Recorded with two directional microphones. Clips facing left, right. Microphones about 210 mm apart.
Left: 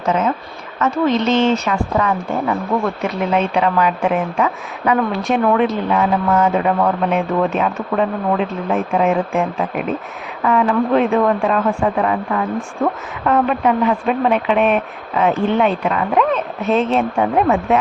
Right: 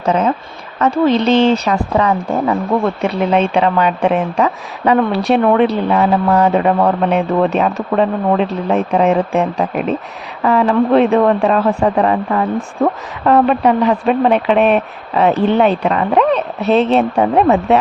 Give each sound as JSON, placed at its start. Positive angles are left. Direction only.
{"t": 0.0, "sound": "speech", "side_deg": -35}